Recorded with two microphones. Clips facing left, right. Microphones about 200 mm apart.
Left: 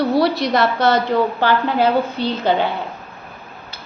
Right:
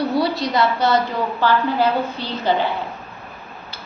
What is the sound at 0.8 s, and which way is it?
Speech, 60° left (ahead or behind).